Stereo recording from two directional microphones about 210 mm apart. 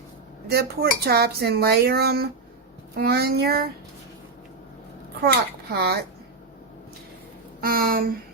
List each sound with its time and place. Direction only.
0.4 s speech: 50° right (ahead or behind)
5.7 s speech: 50° right (ahead or behind)
7.6 s speech: 45° right (ahead or behind)